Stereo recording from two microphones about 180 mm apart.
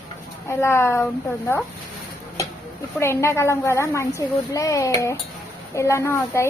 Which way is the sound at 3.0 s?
15° left (ahead or behind).